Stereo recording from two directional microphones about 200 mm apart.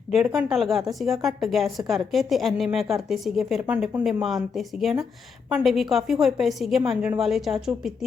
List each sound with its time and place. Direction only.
0.3 s a woman's voice: 5° right (ahead or behind)